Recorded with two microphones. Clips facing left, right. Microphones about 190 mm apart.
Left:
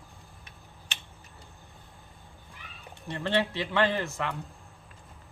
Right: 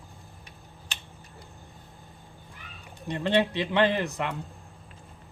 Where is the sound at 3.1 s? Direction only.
15° right (ahead or behind).